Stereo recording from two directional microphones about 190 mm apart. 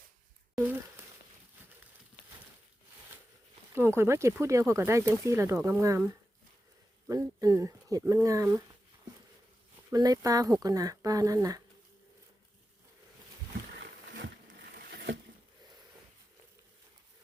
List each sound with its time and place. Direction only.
0.5 s a sound: 10° right (ahead or behind)
3.8 s speech: 15° right (ahead or behind)
7.1 s speech: 15° right (ahead or behind)
9.9 s speech: 20° right (ahead or behind)
14.1 s a sound: 65° right (ahead or behind)
14.8 s patter: 60° right (ahead or behind)